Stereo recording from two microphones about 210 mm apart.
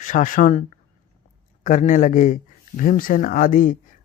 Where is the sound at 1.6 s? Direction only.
35° left (ahead or behind).